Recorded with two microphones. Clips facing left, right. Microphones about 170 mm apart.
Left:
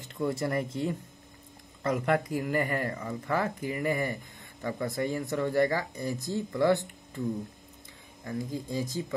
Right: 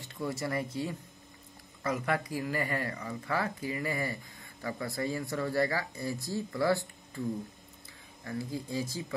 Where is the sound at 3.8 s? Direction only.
20° left (ahead or behind).